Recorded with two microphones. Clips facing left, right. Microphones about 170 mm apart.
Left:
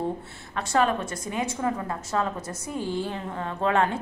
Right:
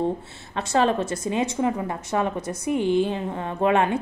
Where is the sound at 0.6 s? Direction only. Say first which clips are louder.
Right 3 dB; 25° right (ahead or behind).